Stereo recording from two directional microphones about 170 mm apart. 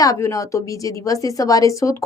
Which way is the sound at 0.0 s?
20° left (ahead or behind).